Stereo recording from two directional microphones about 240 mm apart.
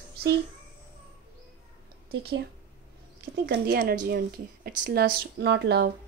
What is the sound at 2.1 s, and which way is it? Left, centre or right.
Speech, right.